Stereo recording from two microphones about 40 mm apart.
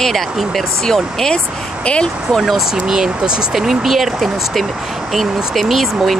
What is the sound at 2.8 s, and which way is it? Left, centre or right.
Speech, centre.